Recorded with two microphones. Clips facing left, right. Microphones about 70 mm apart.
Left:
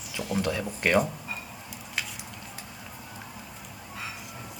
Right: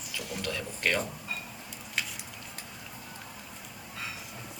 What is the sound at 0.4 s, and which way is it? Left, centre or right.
Speech, left.